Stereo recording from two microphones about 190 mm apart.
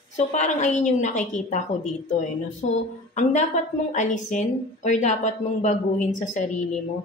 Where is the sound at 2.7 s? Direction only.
40° left (ahead or behind).